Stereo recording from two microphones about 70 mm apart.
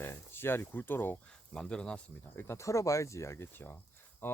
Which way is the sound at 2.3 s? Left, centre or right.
Left.